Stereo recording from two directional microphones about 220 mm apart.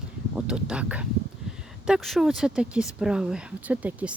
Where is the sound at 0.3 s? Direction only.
5° right (ahead or behind).